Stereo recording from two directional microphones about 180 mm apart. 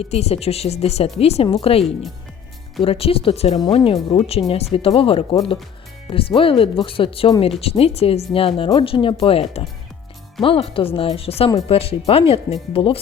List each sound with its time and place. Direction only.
0.0 s speech: 35° left (ahead or behind)
2.8 s speech: 30° left (ahead or behind)